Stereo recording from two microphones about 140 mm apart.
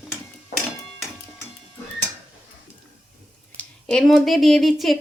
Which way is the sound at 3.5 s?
5° left (ahead or behind).